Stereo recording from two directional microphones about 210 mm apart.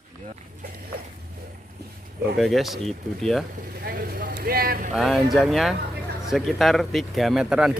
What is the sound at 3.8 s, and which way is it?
Vehicle, 45° right (ahead or behind).